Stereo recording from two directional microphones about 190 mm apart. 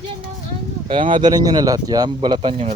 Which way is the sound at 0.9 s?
25° right (ahead or behind).